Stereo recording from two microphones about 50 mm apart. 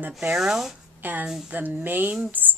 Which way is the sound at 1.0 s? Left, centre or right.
Right.